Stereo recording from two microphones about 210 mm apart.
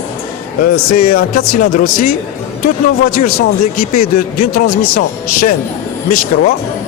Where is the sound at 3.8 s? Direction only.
45° left (ahead or behind).